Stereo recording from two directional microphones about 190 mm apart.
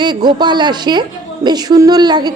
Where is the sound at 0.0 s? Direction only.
25° right (ahead or behind).